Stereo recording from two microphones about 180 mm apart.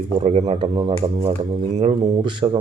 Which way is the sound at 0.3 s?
35° right (ahead or behind).